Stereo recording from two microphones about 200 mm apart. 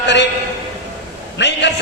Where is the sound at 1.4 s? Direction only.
60° left (ahead or behind).